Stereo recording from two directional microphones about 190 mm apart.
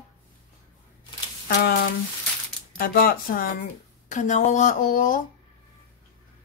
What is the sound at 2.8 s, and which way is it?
Speech, 50° left (ahead or behind).